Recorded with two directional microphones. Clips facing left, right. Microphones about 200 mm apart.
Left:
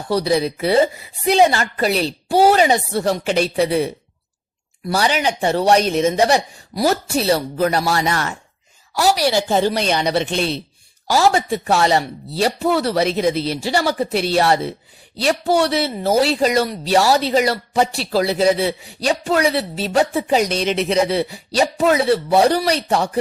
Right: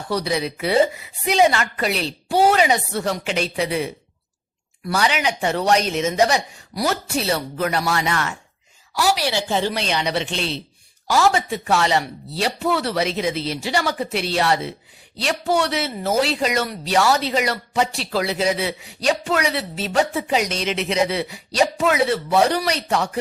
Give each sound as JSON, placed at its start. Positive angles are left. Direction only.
{"t": 0.1, "sound": "a woman's voice", "side_deg": 35}